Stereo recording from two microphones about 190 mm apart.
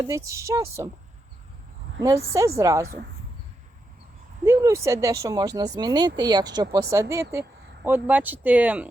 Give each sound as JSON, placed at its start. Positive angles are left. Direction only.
{"t": 0.0, "sound": "speech", "side_deg": -15}
{"t": 2.0, "sound": "speech", "side_deg": -15}
{"t": 4.4, "sound": "speech", "side_deg": -15}